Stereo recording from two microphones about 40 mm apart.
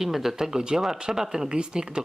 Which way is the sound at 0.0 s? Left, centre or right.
Centre.